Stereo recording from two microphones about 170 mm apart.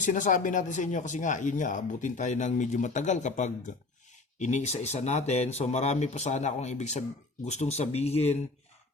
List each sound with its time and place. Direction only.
0.0 s speech: 50° left (ahead or behind)